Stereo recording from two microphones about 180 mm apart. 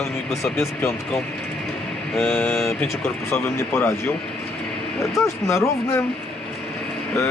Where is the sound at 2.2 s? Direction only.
10° left (ahead or behind).